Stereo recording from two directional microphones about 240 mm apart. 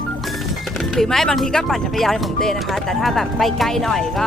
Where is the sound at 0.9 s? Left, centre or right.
Centre.